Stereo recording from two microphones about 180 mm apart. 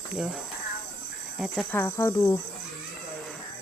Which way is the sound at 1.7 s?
15° left (ahead or behind).